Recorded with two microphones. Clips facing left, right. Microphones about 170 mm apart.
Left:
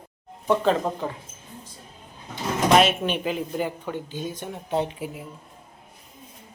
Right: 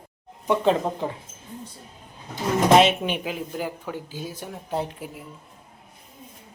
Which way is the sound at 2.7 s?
20° right (ahead or behind).